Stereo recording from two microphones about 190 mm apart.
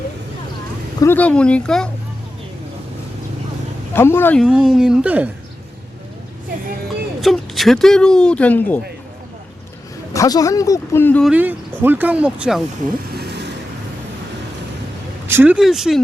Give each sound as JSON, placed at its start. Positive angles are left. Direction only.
{"t": 1.0, "sound": "a woman's voice", "side_deg": 10}
{"t": 3.9, "sound": "speech", "side_deg": 10}
{"t": 4.4, "sound": "a woman's voice", "side_deg": -5}
{"t": 7.2, "sound": "speech", "side_deg": 0}
{"t": 10.1, "sound": "speech", "side_deg": 20}
{"t": 11.3, "sound": "speech", "side_deg": -10}
{"t": 13.1, "sound": "vehicle", "side_deg": -60}
{"t": 15.3, "sound": "a woman's voice", "side_deg": -10}